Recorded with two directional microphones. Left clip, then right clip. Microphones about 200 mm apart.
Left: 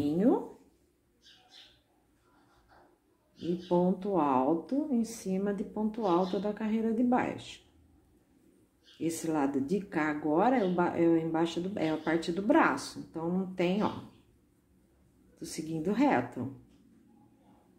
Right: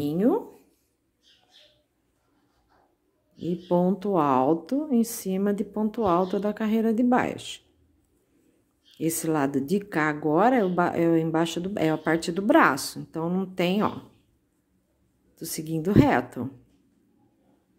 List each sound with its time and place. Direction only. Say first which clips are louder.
0.0 s a sound: right 4 dB; 40° right (ahead or behind)
3.6 s speech: right 5 dB; 50° right (ahead or behind)
8.9 s speech: right 6 dB; 45° right (ahead or behind)
15.3 s speech: right 6 dB; 45° right (ahead or behind)